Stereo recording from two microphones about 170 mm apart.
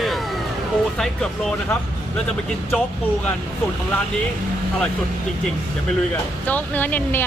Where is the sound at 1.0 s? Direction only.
5° left (ahead or behind).